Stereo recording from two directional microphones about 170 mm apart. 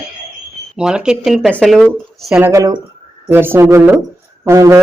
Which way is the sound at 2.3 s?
15° right (ahead or behind).